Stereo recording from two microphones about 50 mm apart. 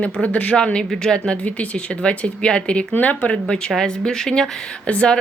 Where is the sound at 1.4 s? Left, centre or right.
Left.